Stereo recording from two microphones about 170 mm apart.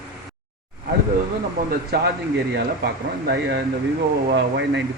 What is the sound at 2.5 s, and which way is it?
Speech, 70° right (ahead or behind).